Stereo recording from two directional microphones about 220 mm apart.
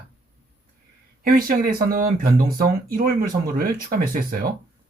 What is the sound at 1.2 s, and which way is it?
Speech, 40° right (ahead or behind).